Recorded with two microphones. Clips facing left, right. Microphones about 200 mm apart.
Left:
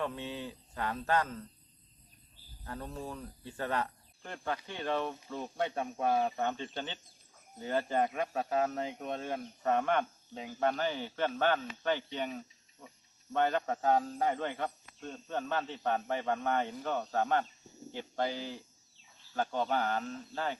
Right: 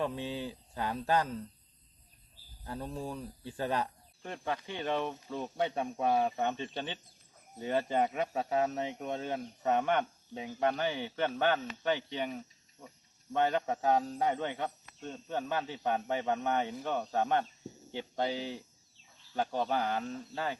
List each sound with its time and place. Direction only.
0.0 s speech: 15° right (ahead or behind)
2.6 s speech: 15° right (ahead or behind)
9.0 s speech: 10° right (ahead or behind)
15.1 s speech: 5° right (ahead or behind)